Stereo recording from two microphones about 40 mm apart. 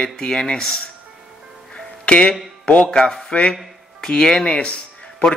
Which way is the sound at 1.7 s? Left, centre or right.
Left.